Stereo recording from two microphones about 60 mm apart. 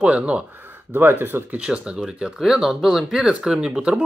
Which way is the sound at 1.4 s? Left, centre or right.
Centre.